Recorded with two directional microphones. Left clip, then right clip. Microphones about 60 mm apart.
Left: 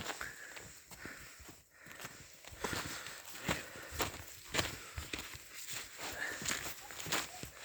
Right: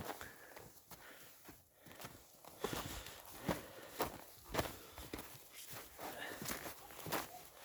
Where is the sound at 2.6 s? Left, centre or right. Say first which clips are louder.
Left 4 dB; centre.